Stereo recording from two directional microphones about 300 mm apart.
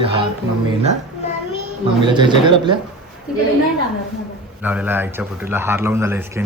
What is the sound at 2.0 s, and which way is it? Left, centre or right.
Speech, centre.